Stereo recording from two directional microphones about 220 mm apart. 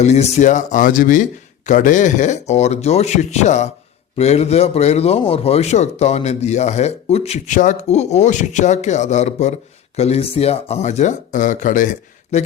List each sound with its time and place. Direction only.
0.0 s speech: 30° left (ahead or behind)